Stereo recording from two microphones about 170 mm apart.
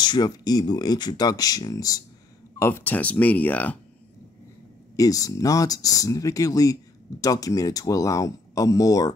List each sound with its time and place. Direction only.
0.0 s speech: 25° left (ahead or behind)
4.9 s speech: 20° left (ahead or behind)